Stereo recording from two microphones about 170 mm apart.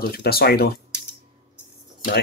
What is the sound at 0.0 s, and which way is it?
Speech, 65° left (ahead or behind).